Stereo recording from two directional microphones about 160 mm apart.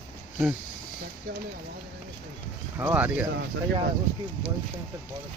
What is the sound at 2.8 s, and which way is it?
Speech, 10° right (ahead or behind).